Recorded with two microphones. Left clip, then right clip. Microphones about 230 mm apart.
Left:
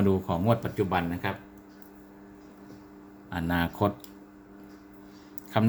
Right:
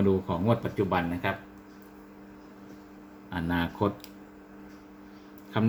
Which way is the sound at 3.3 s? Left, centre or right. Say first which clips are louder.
Left 1 dB; centre.